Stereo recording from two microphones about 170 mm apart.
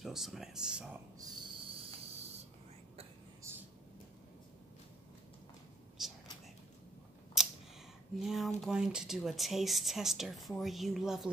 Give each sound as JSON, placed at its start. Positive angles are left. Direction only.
{"t": 0.0, "sound": "speech", "side_deg": 0}
{"t": 1.1, "sound": "a sound", "side_deg": -25}
{"t": 3.4, "sound": "a sound", "side_deg": -15}
{"t": 6.0, "sound": "whispering", "side_deg": 0}
{"t": 7.4, "sound": "camera", "side_deg": 0}
{"t": 8.2, "sound": "speech", "side_deg": 0}